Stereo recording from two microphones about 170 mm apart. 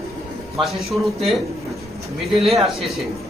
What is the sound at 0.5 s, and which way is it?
Speech, centre (ahead or behind).